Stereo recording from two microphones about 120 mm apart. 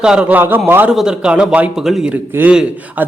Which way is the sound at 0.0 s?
5° right (ahead or behind).